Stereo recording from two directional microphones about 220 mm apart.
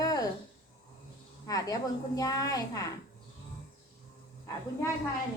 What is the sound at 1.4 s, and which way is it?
A woman's voice, 15° left (ahead or behind).